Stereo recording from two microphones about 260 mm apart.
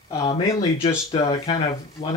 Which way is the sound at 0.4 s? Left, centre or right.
Centre.